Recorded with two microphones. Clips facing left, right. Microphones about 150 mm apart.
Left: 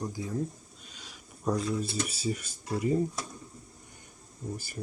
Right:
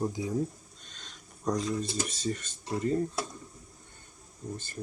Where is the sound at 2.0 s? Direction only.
10° left (ahead or behind).